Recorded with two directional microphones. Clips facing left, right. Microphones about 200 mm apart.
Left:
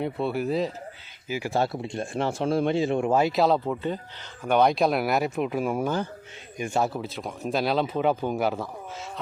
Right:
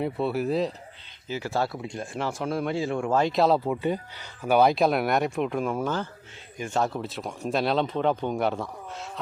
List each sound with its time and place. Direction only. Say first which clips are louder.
0.0 s speech: right 1 dB; centre (ahead or behind)
1.3 s speech: left 2 dB; 15° left (ahead or behind)
3.2 s speech: right 2 dB; 5° left (ahead or behind)
3.6 s speech: right 2 dB; 10° right (ahead or behind)